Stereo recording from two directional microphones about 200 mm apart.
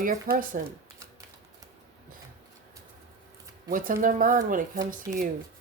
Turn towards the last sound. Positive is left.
turn(degrees=-40)  # may be behind; listen again after turning